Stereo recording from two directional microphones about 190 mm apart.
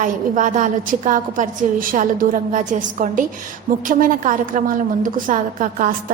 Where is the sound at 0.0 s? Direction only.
40° right (ahead or behind).